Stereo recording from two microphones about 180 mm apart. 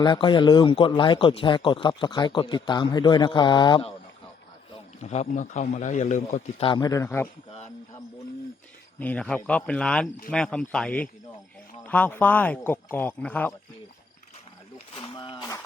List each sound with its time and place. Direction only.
0.0 s speech: 25° left (ahead or behind)
5.0 s a man's voice: 40° left (ahead or behind)
6.7 s speech: 20° left (ahead or behind)
9.0 s speech: 5° left (ahead or behind)
14.9 s a sound: 25° left (ahead or behind)